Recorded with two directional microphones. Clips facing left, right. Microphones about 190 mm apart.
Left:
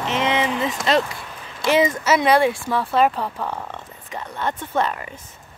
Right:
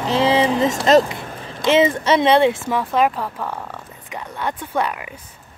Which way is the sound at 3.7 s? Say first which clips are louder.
Even; 10° right (ahead or behind).